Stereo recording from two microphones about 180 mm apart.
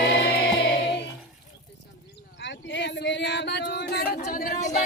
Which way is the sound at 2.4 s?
80° left.